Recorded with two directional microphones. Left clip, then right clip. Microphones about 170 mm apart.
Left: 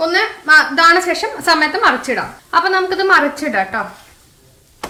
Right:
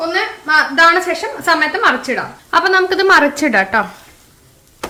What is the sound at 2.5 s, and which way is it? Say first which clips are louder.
A woman's voice: right 2 dB; 25° right (ahead or behind).